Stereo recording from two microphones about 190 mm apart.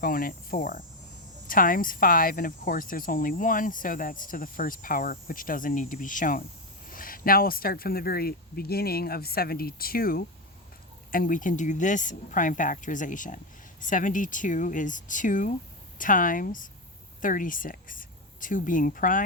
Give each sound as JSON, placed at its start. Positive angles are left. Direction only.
{"t": 0.0, "sound": "speech", "side_deg": 50}